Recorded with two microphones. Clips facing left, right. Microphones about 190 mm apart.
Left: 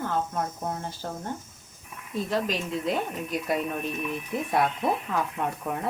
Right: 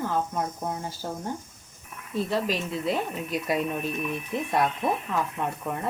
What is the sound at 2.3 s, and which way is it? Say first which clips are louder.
A woman's voice: left 1 dB; 5° right (ahead or behind).